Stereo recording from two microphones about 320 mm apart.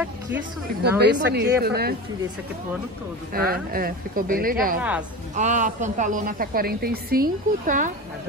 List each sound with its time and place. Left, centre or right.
0.8 s a woman's voice: right
3.3 s a woman's voice: right
4.7 s a woman's voice: centre
5.3 s a woman's voice: right